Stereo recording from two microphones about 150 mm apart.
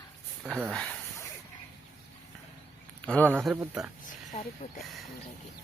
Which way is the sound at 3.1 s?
10° left (ahead or behind).